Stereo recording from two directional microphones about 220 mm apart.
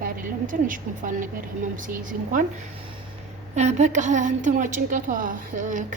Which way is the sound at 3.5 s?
30° right (ahead or behind).